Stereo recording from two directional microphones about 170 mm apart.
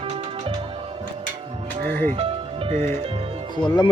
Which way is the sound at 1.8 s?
60° right (ahead or behind).